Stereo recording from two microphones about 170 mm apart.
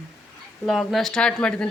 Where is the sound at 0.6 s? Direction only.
5° left (ahead or behind).